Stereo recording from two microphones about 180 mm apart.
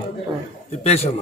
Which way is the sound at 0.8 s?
35° left (ahead or behind).